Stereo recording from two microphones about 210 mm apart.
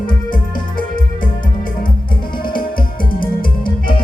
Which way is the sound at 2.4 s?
45° left (ahead or behind).